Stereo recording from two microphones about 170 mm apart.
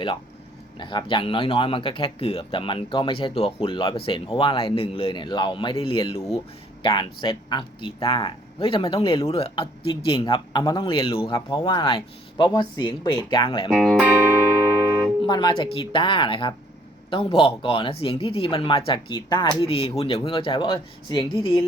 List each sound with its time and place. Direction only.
0.8 s speech: 30° left (ahead or behind)
13.7 s speech: 5° left (ahead or behind)
15.2 s speech: 25° left (ahead or behind)